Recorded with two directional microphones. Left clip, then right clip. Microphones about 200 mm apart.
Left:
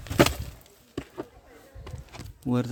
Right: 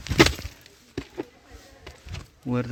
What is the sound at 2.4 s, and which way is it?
Speech, 15° left (ahead or behind).